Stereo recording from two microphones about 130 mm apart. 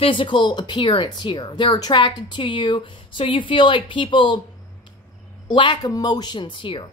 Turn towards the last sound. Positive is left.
turn(degrees=40)  # may be behind; listen again after turning